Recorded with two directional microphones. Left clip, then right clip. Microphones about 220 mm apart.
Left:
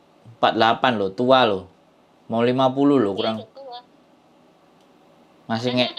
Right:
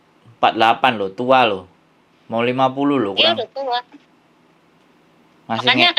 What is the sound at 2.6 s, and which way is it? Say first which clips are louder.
Speech: even; 15° left (ahead or behind).